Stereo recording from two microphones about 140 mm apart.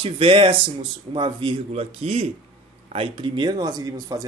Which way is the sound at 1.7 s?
50° right (ahead or behind).